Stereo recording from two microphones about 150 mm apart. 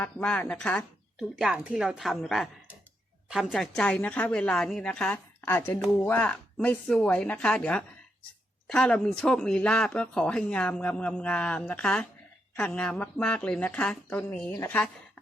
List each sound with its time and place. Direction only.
0.0 s speech: 10° left (ahead or behind)
1.4 s a woman's voice: 5° right (ahead or behind); by 14.8 s 15° left (ahead or behind)